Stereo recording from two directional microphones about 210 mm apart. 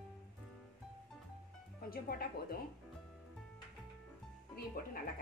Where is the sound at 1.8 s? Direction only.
45° left (ahead or behind).